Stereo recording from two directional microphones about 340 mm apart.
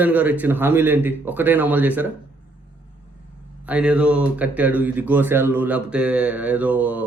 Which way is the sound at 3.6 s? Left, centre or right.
Centre.